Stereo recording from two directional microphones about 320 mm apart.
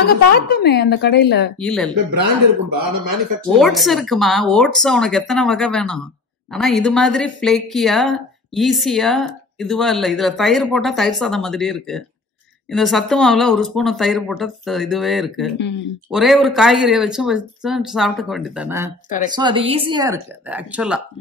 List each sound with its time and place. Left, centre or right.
0.0 s a woman's voice: left
1.6 s speech: centre
3.4 s speech: centre
15.5 s speech: left
16.1 s speech: centre